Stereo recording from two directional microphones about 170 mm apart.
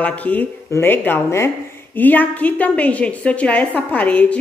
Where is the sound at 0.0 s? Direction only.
10° left (ahead or behind).